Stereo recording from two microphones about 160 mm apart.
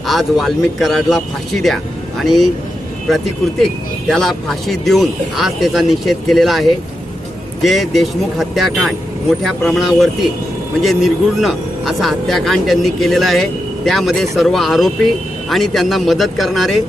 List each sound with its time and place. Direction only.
0.1 s speech: centre (ahead or behind)
4.1 s speech: centre (ahead or behind)